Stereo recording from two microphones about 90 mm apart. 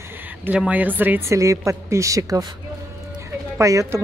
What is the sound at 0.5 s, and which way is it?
Speech, 15° right (ahead or behind).